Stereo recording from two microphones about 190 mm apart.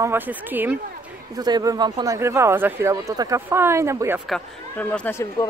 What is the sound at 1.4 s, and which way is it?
Speech, 20° right (ahead or behind).